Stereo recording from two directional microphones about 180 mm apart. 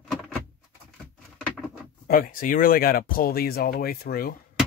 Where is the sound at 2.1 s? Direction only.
50° left (ahead or behind).